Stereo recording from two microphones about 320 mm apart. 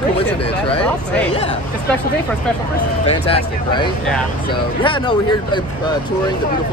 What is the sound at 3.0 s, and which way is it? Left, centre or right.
Speech, centre.